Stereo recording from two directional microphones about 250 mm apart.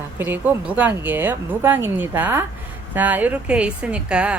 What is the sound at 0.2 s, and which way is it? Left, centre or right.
Speech, centre.